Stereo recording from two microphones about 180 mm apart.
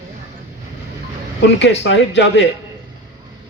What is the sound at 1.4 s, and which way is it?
Speech, 80° left.